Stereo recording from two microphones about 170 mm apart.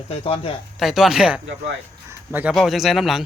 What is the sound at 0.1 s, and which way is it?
Speech, 35° left (ahead or behind).